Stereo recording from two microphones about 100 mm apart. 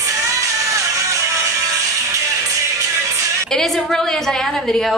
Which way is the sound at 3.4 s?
5° left (ahead or behind).